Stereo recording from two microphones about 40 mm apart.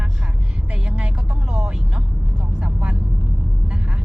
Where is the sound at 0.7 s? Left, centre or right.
Right.